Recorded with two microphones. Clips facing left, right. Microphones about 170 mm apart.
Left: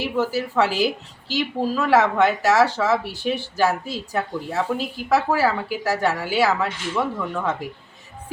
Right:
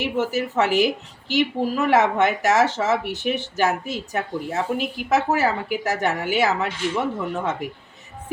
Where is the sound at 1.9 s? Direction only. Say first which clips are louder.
Left 2 dB; 20° right (ahead or behind).